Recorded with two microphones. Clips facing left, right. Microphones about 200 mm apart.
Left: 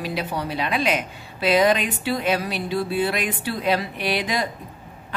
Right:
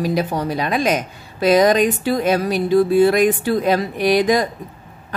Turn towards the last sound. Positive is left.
turn(degrees=-45)  # may be behind; listen again after turning